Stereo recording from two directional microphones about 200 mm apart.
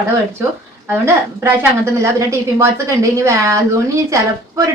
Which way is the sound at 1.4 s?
15° right (ahead or behind).